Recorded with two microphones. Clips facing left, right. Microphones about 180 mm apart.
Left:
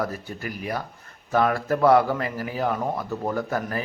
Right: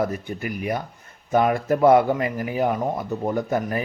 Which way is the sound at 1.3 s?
20° right (ahead or behind).